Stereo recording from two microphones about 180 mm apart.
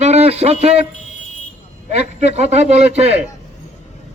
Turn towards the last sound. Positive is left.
turn(degrees=-35)  # may be behind; listen again after turning